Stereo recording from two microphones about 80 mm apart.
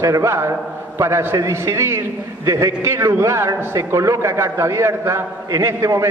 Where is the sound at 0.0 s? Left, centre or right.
Right.